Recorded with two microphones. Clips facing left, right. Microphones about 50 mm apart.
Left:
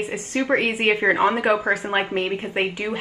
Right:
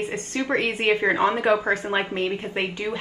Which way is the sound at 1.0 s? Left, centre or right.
Centre.